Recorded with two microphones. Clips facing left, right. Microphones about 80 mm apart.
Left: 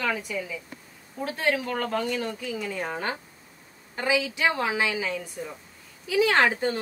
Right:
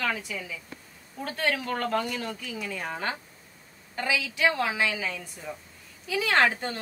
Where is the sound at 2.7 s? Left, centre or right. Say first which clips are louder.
Right 1 dB; centre.